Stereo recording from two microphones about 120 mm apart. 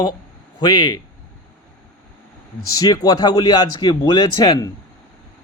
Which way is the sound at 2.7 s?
30° left (ahead or behind).